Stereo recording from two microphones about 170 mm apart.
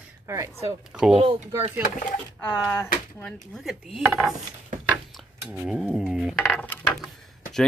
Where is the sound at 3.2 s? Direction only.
Centre (ahead or behind).